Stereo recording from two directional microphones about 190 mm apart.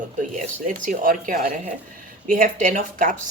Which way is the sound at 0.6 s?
45° right (ahead or behind).